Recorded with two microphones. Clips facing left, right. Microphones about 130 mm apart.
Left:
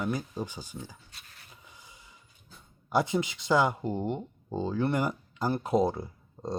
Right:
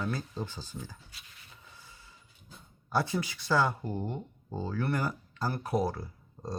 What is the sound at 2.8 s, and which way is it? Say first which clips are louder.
Speech: left 4 dB; 20° left (ahead or behind).